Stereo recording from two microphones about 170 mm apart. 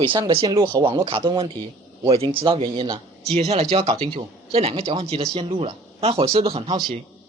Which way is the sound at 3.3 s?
40° right (ahead or behind).